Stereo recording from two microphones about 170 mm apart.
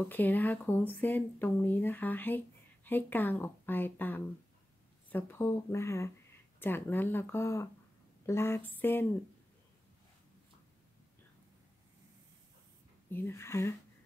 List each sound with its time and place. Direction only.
0.1 s speech: 10° left (ahead or behind)
13.1 s speech: 15° left (ahead or behind)